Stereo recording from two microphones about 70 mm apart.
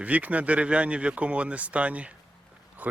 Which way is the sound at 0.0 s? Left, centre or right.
Right.